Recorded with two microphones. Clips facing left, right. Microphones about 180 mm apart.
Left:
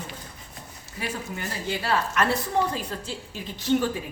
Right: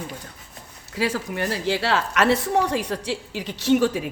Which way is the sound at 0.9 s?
90° right.